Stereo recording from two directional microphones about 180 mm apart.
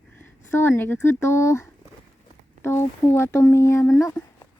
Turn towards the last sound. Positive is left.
turn(degrees=20)  # may be behind; listen again after turning